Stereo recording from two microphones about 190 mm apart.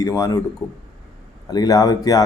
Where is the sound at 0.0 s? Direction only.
15° left (ahead or behind).